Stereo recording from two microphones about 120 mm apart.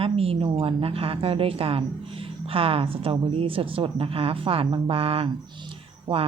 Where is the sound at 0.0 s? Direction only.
50° right (ahead or behind).